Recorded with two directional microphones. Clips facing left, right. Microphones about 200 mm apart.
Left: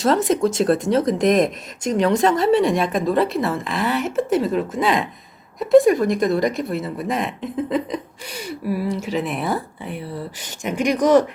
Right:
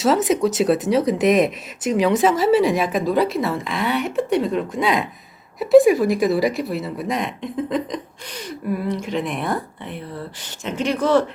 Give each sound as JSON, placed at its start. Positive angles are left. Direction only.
{"t": 0.0, "sound": "speech", "side_deg": -5}